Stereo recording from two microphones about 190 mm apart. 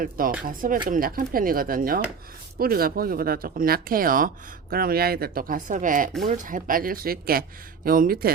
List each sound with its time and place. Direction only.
0.4 s speech: 45° right (ahead or behind)